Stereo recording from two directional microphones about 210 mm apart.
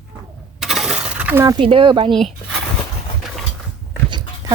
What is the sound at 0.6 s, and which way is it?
Breaking, centre (ahead or behind).